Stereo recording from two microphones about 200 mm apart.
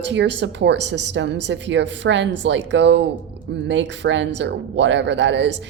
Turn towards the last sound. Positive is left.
turn(degrees=-60)  # may be behind; listen again after turning